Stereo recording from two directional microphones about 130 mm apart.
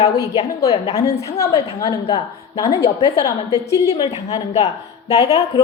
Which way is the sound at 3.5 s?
25° right (ahead or behind).